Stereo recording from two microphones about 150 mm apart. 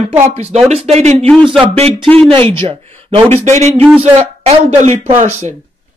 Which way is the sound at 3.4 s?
50° right (ahead or behind).